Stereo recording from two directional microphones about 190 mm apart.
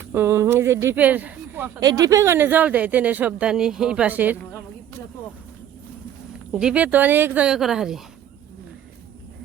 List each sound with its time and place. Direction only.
0.1 s speech: 15° right (ahead or behind)
1.8 s speech: 20° right (ahead or behind)
6.5 s speech: 5° right (ahead or behind)